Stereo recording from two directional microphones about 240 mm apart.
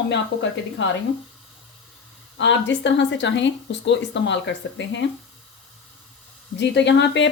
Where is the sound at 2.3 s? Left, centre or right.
Left.